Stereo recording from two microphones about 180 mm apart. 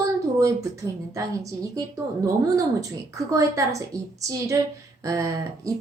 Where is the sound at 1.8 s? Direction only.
20° right (ahead or behind).